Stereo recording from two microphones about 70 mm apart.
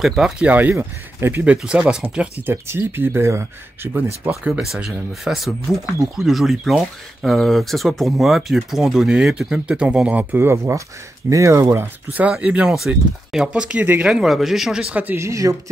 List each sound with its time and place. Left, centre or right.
0.0 s speech: centre
0.4 s speech: right
1.4 s speech: centre
2.4 s speech: right
4.7 s speech: centre
10.3 s speech: right
11.2 s speech: right
12.1 s speech: centre
12.7 s speech: centre
13.5 s speech: centre
14.1 s speech: centre
15.1 s speech: right